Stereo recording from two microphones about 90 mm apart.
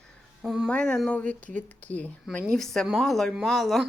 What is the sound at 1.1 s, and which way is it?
Speech, 15° left (ahead or behind).